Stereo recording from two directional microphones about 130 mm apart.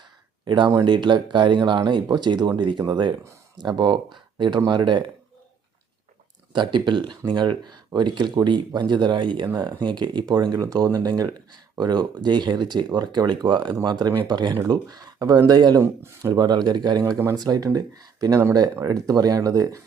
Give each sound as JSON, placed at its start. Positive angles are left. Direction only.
{"t": 0.4, "sound": "speech", "side_deg": -35}
{"t": 6.5, "sound": "speech", "side_deg": -35}